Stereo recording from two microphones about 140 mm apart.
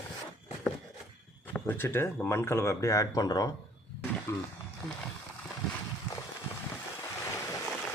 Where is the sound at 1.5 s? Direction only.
15° left (ahead or behind).